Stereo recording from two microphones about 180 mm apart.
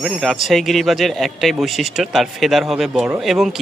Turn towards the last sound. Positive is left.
turn(degrees=0)  # may be behind; listen again after turning